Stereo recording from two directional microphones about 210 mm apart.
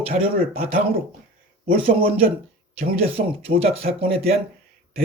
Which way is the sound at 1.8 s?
25° right (ahead or behind).